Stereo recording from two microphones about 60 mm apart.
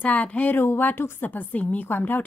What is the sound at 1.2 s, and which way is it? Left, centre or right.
A woman's voice, left.